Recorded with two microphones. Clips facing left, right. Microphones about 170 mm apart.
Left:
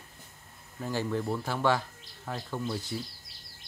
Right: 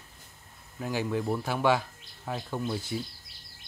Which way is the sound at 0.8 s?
10° right (ahead or behind).